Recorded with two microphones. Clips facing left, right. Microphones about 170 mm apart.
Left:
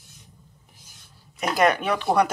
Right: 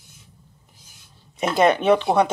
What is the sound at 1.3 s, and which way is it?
Speech, 30° right (ahead or behind).